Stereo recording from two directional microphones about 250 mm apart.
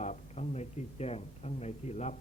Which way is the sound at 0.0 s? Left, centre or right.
Left.